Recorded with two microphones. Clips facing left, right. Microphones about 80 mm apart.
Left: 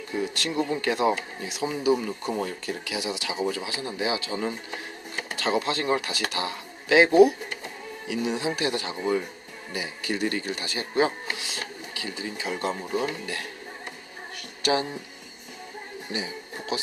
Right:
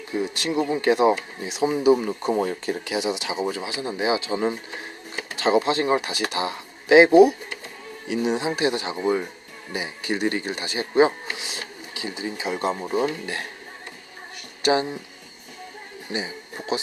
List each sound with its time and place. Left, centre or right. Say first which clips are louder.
0.1 s speech: right 4 dB; right
14.6 s speech: right 4 dB; right
16.1 s speech: right 3 dB; right